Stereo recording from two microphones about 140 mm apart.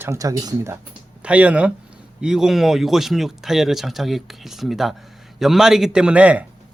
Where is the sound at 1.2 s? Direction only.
10° right (ahead or behind).